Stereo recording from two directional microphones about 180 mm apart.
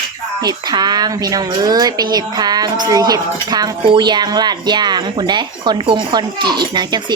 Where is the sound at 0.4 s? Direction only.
20° right (ahead or behind).